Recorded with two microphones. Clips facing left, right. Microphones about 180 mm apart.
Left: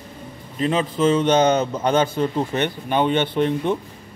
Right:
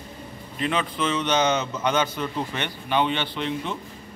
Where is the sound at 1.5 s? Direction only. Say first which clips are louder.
Left 5 dB; 35° left (ahead or behind).